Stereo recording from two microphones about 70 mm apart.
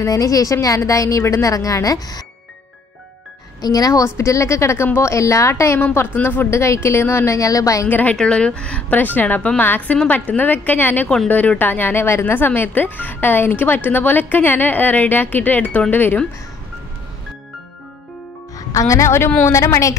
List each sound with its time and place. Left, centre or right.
0.0 s a woman's voice: left
3.6 s a woman's voice: left
6.2 s speech: left
6.5 s a woman's voice: left
7.9 s speech: left
18.7 s a woman's voice: left